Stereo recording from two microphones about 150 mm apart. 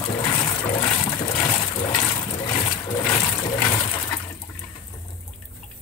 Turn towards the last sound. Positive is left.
turn(degrees=25)  # may be behind; listen again after turning